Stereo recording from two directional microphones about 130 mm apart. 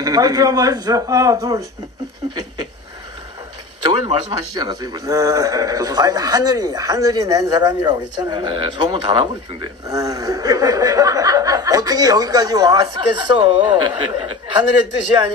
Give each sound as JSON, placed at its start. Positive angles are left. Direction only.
{"t": 0.0, "sound": "a man's voice", "side_deg": -30}
{"t": 3.8, "sound": "a man's voice", "side_deg": -35}